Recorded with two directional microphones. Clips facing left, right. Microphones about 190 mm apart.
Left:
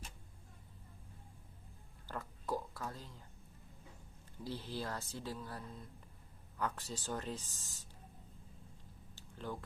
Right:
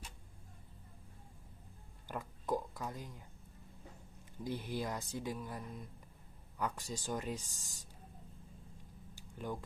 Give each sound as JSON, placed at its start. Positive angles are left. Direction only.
{"t": 2.0, "sound": "speech", "side_deg": -15}
{"t": 4.4, "sound": "speech", "side_deg": -15}
{"t": 9.1, "sound": "a sound", "side_deg": -15}